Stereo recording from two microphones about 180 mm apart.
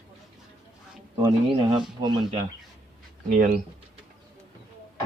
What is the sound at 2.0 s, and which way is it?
Speech, 35° right (ahead or behind).